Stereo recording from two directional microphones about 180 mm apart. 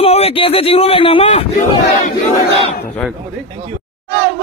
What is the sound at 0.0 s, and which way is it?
Speech, 35° left (ahead or behind).